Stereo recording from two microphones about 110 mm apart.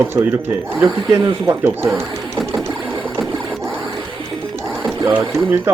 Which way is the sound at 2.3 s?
Centre (ahead or behind).